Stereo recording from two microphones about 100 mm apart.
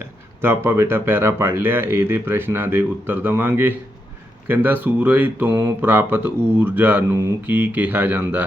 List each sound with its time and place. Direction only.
0.4 s speech: 25° right (ahead or behind)